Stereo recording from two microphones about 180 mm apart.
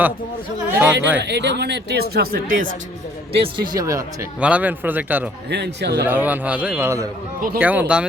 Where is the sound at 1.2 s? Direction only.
70° right (ahead or behind); by 2.6 s 55° right (ahead or behind).